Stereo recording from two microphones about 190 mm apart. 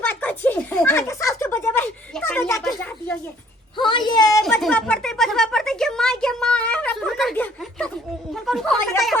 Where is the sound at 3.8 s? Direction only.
25° left (ahead or behind).